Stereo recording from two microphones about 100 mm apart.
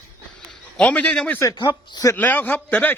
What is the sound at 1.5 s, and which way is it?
Speech, 50° left (ahead or behind).